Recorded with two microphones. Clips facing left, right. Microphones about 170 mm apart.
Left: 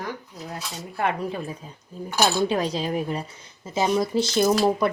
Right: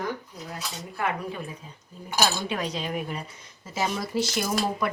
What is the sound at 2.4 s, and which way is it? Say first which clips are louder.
Speech: left 6 dB; 35° left (ahead or behind).